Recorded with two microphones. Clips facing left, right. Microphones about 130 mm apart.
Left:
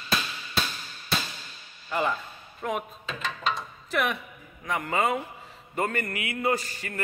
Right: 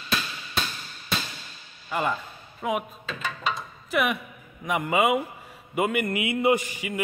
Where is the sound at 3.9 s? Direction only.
5° right (ahead or behind).